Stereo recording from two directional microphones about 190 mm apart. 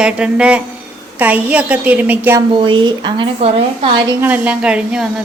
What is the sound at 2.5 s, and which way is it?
A woman's voice, 25° right (ahead or behind).